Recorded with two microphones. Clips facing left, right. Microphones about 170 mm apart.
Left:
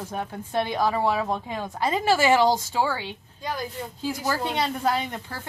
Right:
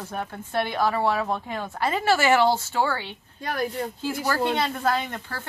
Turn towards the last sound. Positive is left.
turn(degrees=15)  # may be behind; listen again after turning